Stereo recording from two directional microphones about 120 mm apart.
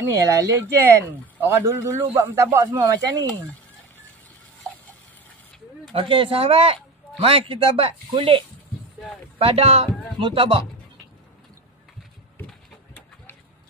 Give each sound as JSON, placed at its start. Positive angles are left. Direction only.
{"t": 0.0, "sound": "speech", "side_deg": -25}
{"t": 5.9, "sound": "speech", "side_deg": -45}